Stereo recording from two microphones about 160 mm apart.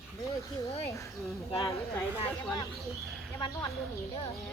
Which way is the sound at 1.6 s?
20° left (ahead or behind).